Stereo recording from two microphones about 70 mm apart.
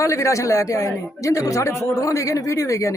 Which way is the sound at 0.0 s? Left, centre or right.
Left.